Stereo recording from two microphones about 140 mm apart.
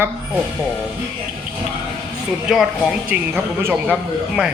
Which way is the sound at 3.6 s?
15° right (ahead or behind).